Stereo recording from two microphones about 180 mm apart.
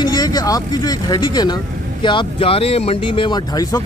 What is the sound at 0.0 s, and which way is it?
Speech, 20° left (ahead or behind).